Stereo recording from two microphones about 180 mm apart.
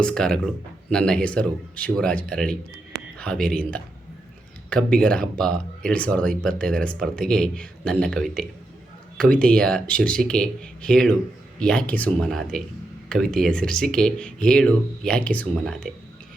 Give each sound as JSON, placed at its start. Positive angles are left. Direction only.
{"t": 0.0, "sound": "speech", "side_deg": 5}